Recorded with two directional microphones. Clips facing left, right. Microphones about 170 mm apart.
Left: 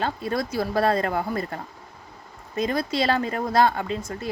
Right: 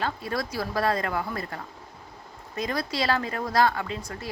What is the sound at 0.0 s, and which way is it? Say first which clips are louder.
Speech: left 3 dB; 25° left (ahead or behind).